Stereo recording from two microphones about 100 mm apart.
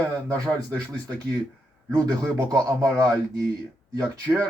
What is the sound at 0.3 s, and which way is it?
Speech, 35° right (ahead or behind).